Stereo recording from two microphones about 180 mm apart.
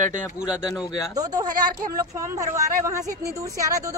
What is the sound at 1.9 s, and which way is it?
Speech, 15° right (ahead or behind).